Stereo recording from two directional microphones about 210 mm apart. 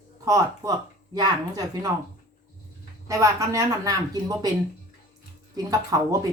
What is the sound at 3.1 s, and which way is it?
A woman's voice, 15° right (ahead or behind).